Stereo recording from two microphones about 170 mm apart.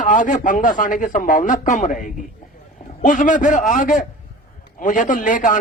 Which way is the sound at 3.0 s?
50° left (ahead or behind).